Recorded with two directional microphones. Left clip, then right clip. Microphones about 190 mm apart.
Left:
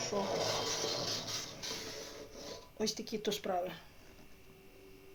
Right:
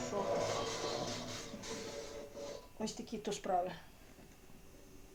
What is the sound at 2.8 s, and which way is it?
Speech, 50° left (ahead or behind).